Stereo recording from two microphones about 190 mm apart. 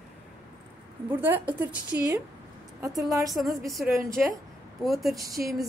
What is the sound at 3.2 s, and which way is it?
A woman's voice, centre (ahead or behind).